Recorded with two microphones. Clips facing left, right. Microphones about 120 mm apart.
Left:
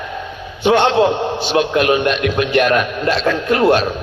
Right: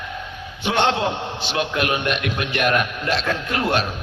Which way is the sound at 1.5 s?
35° left (ahead or behind).